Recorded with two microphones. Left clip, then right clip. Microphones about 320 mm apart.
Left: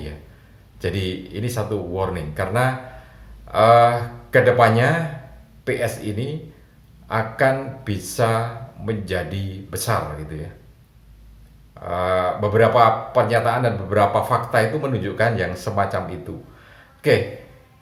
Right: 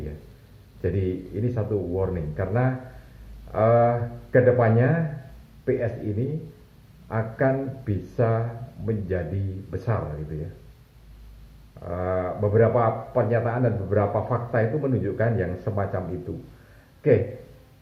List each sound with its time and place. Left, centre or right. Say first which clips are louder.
0.8 s speech: left 2 dB; left
11.8 s speech: left 7 dB; left